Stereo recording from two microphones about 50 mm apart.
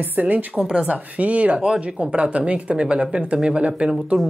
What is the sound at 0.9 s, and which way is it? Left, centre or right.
Speech, right.